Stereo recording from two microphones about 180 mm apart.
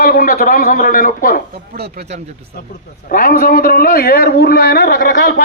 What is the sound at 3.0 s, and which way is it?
A man's voice, 50° left (ahead or behind).